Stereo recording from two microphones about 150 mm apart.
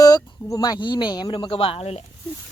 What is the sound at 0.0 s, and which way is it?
A woman's voice, 25° left (ahead or behind).